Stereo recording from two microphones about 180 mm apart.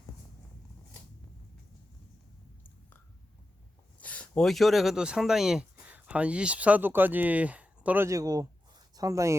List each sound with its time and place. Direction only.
4.0 s speech: 5° left (ahead or behind); by 9.3 s 20° right (ahead or behind)